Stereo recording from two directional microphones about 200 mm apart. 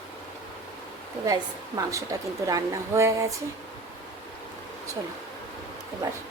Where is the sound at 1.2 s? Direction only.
20° right (ahead or behind).